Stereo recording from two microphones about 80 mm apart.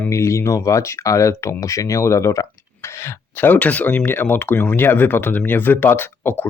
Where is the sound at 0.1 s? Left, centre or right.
Left.